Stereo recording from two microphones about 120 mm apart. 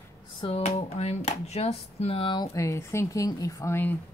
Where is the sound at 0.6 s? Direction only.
70° left (ahead or behind); by 2.5 s 40° left (ahead or behind).